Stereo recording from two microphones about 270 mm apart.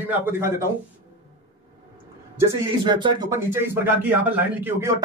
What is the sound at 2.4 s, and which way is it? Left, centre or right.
Speech, centre.